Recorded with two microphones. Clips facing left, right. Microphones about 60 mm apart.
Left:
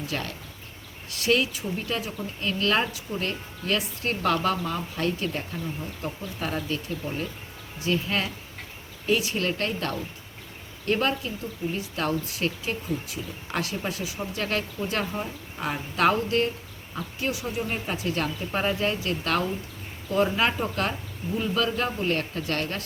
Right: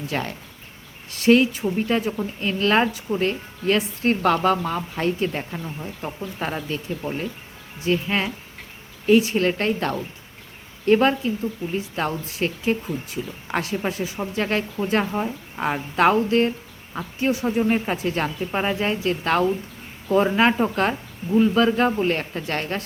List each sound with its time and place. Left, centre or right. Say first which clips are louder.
0.1 s a man's voice: right 5 dB; right
8.0 s a man's voice: right 4 dB; right
18.5 s a man's voice: right 2 dB; centre